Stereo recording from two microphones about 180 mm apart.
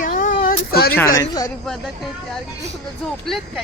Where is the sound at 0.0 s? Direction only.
45° left (ahead or behind).